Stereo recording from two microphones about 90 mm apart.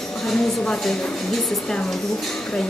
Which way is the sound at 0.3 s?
5° left (ahead or behind).